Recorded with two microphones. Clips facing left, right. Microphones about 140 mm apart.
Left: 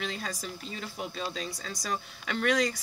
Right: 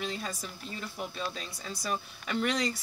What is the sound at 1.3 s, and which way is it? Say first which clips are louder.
Speech: left 3 dB; 90° left.